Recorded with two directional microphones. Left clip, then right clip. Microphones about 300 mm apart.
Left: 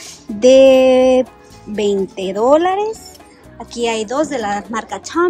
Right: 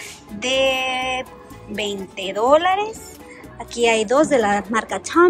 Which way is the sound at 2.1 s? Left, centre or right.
Centre.